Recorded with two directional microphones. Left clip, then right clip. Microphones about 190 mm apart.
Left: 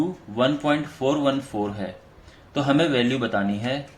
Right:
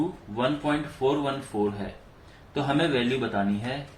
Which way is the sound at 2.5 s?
55° left (ahead or behind).